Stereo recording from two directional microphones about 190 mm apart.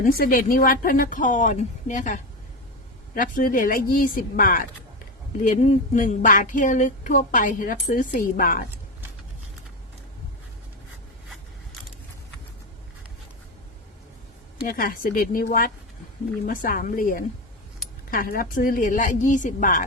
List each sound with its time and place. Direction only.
0.0 s speech: 50° left (ahead or behind)
14.6 s speech: 50° left (ahead or behind)